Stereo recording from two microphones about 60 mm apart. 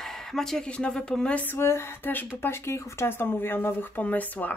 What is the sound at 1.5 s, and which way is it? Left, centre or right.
Speech, left.